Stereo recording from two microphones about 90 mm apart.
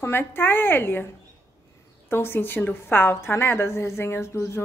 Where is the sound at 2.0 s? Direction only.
25° left (ahead or behind).